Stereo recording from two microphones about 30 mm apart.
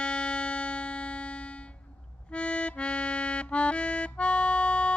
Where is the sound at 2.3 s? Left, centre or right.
Left.